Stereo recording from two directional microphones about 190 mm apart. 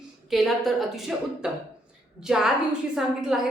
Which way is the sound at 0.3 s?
Centre (ahead or behind).